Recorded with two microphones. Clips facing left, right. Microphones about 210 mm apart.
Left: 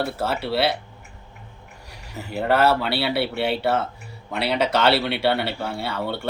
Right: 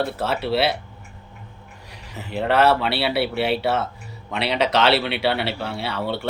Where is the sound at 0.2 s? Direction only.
Centre (ahead or behind).